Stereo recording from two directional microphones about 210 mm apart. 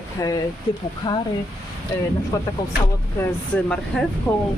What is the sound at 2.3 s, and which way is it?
Speech, 15° left (ahead or behind).